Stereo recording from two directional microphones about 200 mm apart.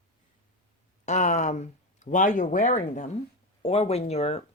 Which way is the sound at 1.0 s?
35° left (ahead or behind).